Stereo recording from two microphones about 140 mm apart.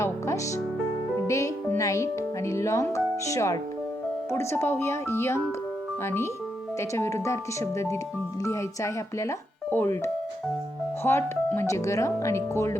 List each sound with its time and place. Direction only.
0.0 s music: 20° left (ahead or behind)
1.3 s speech: 20° left (ahead or behind)
6.7 s speech: 20° left (ahead or behind)